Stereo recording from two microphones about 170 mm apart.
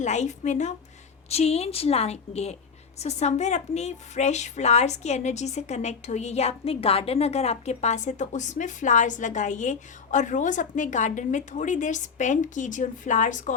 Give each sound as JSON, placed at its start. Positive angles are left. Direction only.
{"t": 0.0, "sound": "a woman's voice", "side_deg": 45}